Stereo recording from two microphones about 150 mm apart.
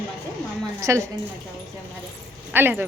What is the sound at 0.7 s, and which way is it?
Speech, 20° right (ahead or behind).